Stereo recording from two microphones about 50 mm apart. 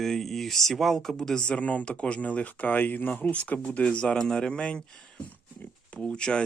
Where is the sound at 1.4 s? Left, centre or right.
Centre.